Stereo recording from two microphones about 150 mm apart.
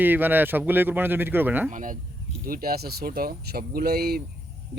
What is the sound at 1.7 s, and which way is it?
Speech, 60° right (ahead or behind).